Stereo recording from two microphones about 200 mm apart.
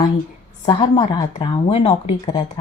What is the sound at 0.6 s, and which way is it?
Speech, 25° left (ahead or behind).